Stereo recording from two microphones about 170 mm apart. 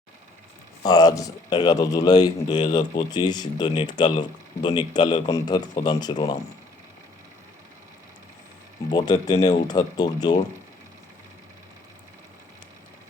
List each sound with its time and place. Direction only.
0.9 s speech: 20° left (ahead or behind)
8.9 s speech: 25° left (ahead or behind)